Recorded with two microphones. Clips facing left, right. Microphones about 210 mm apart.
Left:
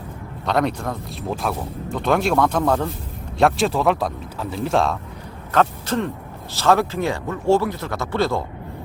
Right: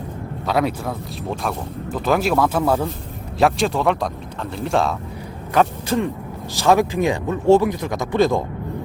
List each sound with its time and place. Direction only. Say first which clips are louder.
0.4 s speech: even; 5° right (ahead or behind)
5.5 s speech: right 1 dB; 10° right (ahead or behind)